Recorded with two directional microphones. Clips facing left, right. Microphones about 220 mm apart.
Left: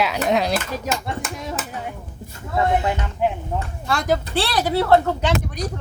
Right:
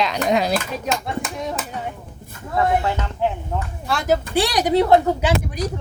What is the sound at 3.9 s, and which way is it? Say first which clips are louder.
Speech: right 1 dB; centre (ahead or behind).